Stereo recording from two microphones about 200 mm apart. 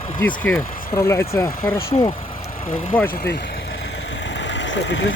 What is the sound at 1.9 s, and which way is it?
Speech, 25° left (ahead or behind).